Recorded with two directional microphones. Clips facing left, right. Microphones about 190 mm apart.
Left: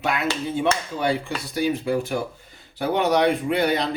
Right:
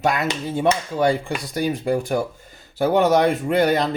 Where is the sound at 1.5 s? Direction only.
50° right (ahead or behind).